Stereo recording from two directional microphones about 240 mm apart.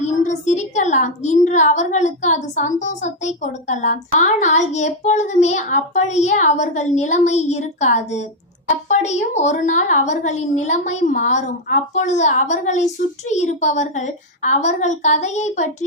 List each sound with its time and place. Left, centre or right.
0.0 s a woman's voice: left